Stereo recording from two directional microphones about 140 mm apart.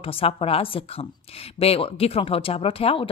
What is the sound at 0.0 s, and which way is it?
A woman's voice, 40° left (ahead or behind).